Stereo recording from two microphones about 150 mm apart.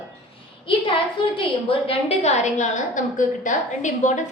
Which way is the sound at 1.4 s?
40° left (ahead or behind).